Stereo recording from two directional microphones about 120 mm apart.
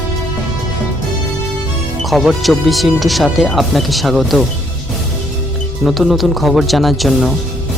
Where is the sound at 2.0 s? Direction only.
Centre (ahead or behind).